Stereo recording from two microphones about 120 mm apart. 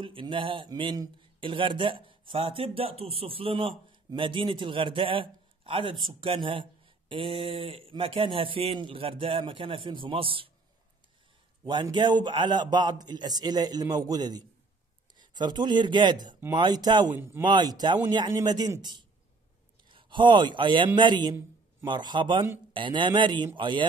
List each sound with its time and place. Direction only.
0.0 s speech: 45° right (ahead or behind)
11.6 s a man's voice: 40° right (ahead or behind)